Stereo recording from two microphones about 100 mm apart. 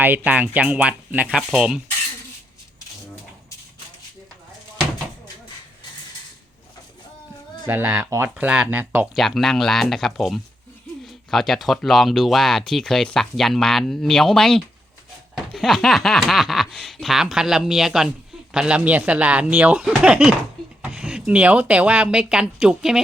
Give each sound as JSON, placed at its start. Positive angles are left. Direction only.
{"t": 0.3, "sound": "speech", "side_deg": -15}
{"t": 7.7, "sound": "speech", "side_deg": -25}
{"t": 8.4, "sound": "speech", "side_deg": -10}
{"t": 9.1, "sound": "speech", "side_deg": 0}